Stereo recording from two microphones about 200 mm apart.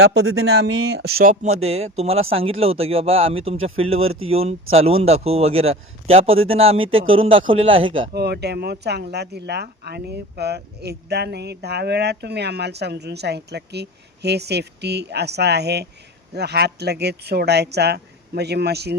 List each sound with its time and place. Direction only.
0.0 s speech: 85° right
0.9 s speech: 50° right (ahead or behind); by 8.1 s 25° right (ahead or behind)
8.1 s speech: 55° right (ahead or behind)